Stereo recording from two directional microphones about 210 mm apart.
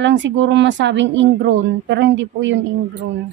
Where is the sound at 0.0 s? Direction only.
60° right (ahead or behind).